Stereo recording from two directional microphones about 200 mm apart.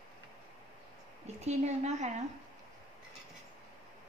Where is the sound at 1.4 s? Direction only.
35° right (ahead or behind).